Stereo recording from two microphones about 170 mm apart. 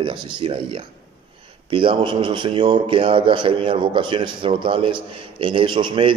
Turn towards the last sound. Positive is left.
turn(degrees=-30)  # may be behind; listen again after turning